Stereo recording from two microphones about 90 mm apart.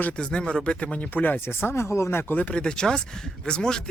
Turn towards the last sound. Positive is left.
turn(degrees=10)  # may be behind; listen again after turning